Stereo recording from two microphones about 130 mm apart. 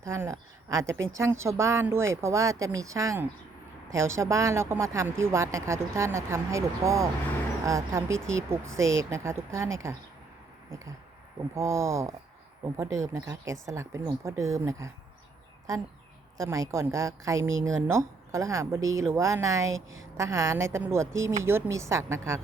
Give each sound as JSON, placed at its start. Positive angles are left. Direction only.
{"t": 0.0, "sound": "a woman's voice", "side_deg": -20}
{"t": 11.5, "sound": "a woman's voice", "side_deg": -20}
{"t": 16.4, "sound": "a woman's voice", "side_deg": -25}